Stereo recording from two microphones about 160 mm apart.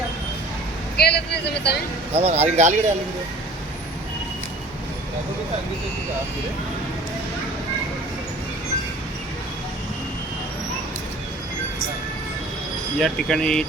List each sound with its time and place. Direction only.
0.9 s speech: 90° left
2.1 s speech: 40° right (ahead or behind)
13.0 s speech: 5° left (ahead or behind)